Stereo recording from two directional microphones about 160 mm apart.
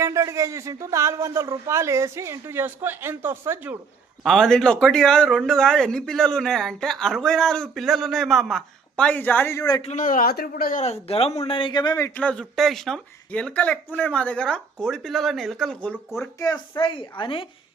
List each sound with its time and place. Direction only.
0.0 s speech: 20° right (ahead or behind)
4.2 s speech: centre (ahead or behind); by 9.8 s 20° left (ahead or behind)
9.8 s a man's voice: 50° left (ahead or behind); by 16.3 s 5° left (ahead or behind)
16.4 s a woman's voice: 25° left (ahead or behind)